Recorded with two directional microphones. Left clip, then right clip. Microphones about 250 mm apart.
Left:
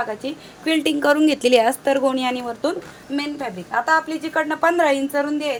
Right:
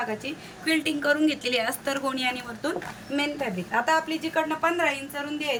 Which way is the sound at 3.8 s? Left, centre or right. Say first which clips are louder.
Left 7 dB; centre.